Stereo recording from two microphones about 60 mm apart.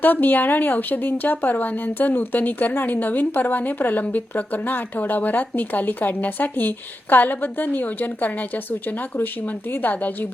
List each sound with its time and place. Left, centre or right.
0.0 s speech: left